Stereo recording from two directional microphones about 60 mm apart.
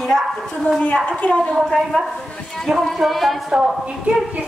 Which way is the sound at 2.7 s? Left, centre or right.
Centre.